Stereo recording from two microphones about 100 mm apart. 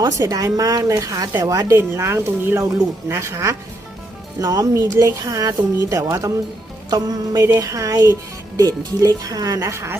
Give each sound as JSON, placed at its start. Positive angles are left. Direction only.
{"t": 0.2, "sound": "speech", "side_deg": -35}
{"t": 1.7, "sound": "speech", "side_deg": -25}